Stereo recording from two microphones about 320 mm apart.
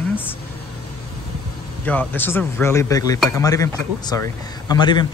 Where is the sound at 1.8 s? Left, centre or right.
Centre.